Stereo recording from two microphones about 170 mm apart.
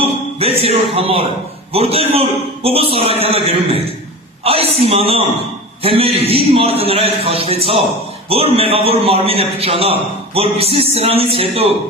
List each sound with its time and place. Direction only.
0.0 s a man's voice: 35° right (ahead or behind)